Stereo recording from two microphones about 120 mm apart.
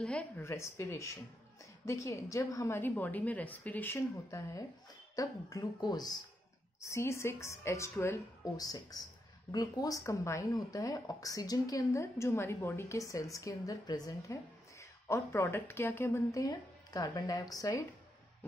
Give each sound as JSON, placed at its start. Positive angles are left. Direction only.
{"t": 0.0, "sound": "a woman's voice", "side_deg": 10}
{"t": 0.4, "sound": "a woman's voice", "side_deg": 25}
{"t": 6.8, "sound": "speech", "side_deg": 25}